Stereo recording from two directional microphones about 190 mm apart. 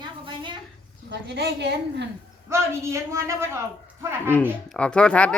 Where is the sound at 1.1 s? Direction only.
65° right (ahead or behind).